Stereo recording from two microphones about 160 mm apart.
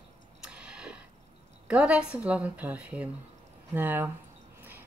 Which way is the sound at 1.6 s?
10° right (ahead or behind).